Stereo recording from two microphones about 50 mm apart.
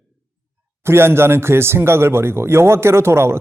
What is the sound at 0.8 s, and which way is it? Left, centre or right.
Speech, right.